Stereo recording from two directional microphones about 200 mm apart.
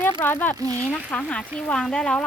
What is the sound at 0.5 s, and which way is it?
Speech, 15° right (ahead or behind).